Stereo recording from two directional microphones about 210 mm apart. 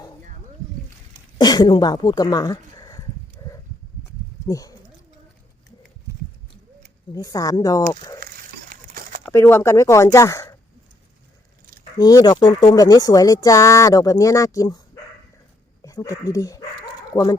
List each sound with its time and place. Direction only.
1.4 s speech: 20° left (ahead or behind)
3.4 s a sound: 15° left (ahead or behind)
4.4 s speech: 15° left (ahead or behind)
7.1 s speech: 15° left (ahead or behind)
8.7 s a sound: 40° right (ahead or behind)
9.2 s speech: 10° left (ahead or behind)
11.9 s speech: 20° left (ahead or behind)
15.8 s speech: 15° left (ahead or behind)